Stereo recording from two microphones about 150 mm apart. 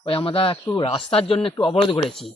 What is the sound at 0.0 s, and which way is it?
Speech, 35° left (ahead or behind).